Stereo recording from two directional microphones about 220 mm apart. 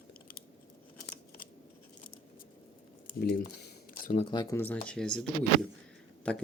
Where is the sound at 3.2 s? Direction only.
45° left (ahead or behind).